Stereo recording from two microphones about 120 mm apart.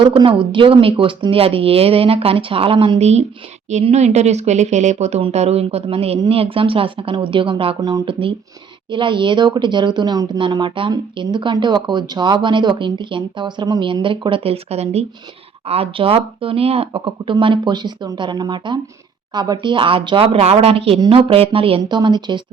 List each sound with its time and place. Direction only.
0.0 s speech: 45° right (ahead or behind)
3.0 s speech: 65° right (ahead or behind); by 7.8 s 45° right (ahead or behind)
7.8 s speech: 35° right (ahead or behind)
21.8 s speech: 40° right (ahead or behind)